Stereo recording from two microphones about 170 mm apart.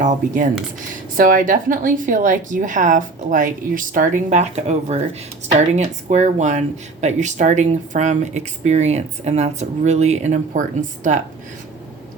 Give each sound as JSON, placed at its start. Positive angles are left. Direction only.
{"t": 1.1, "sound": "speech", "side_deg": -55}